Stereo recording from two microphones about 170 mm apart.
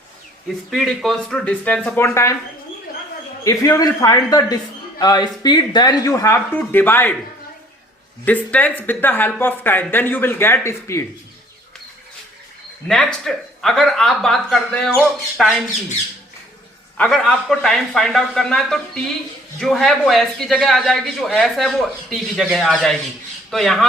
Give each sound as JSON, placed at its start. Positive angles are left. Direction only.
{"t": 0.7, "sound": "speech", "side_deg": 0}
{"t": 3.4, "sound": "a man's voice", "side_deg": 20}
{"t": 8.2, "sound": "speech", "side_deg": 10}
{"t": 12.9, "sound": "a man's voice", "side_deg": 0}
{"t": 17.0, "sound": "a man's voice", "side_deg": 5}